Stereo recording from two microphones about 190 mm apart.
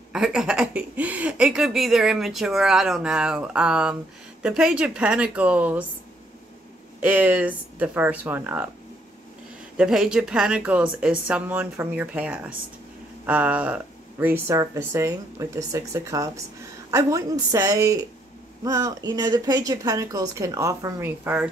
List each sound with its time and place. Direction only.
0.1 s speech: 5° right (ahead or behind)
7.0 s speech: 10° right (ahead or behind)
9.8 s speech: 5° right (ahead or behind)